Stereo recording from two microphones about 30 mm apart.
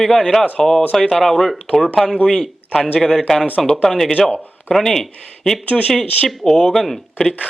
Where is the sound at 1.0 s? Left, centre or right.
Left.